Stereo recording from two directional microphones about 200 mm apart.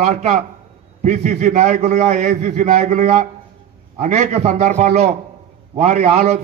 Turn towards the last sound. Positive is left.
turn(degrees=-35)  # may be behind; listen again after turning